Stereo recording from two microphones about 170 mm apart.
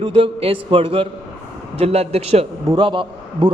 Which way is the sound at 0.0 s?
35° right (ahead or behind).